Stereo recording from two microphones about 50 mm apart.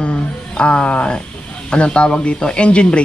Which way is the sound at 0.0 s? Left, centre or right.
Left.